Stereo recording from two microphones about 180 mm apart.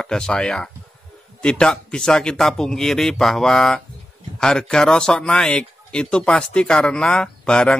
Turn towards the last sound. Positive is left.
turn(degrees=5)  # may be behind; listen again after turning